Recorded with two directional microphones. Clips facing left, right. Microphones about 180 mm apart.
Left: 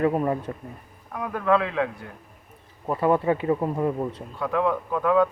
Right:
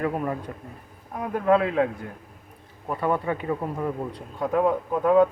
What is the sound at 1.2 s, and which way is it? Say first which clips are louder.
Speech: right 2 dB; 40° right (ahead or behind).